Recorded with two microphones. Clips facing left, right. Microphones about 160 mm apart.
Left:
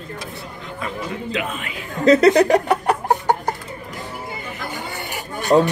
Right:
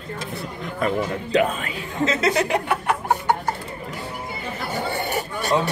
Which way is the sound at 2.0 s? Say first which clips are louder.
Left 9 dB; 40° left (ahead or behind).